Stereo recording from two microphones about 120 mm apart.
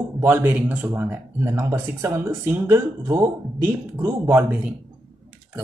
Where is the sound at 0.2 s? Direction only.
15° right (ahead or behind).